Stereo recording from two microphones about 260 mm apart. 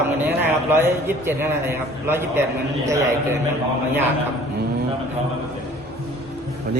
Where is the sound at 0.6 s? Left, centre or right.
Centre.